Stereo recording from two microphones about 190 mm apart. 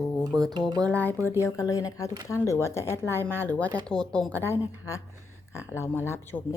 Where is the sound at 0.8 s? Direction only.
10° left (ahead or behind).